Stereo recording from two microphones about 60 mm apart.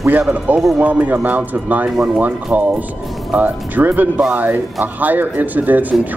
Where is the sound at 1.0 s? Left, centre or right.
Right.